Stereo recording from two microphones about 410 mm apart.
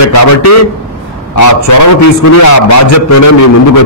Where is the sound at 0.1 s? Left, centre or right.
Left.